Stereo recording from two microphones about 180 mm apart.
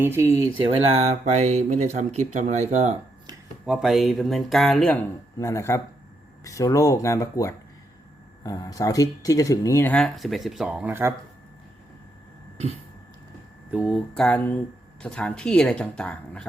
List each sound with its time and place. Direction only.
0.0 s speech: 15° right (ahead or behind)
0.7 s speech: 30° right (ahead or behind)
3.7 s speech: centre (ahead or behind)
13.7 s speech: 5° right (ahead or behind)